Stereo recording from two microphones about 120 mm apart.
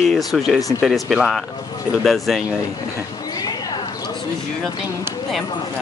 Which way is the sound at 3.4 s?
30° left (ahead or behind).